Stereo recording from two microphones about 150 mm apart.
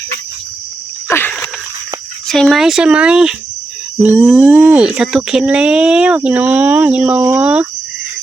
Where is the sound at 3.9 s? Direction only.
10° right (ahead or behind).